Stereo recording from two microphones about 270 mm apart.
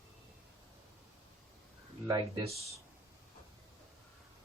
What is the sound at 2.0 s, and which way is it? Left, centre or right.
Speech, centre.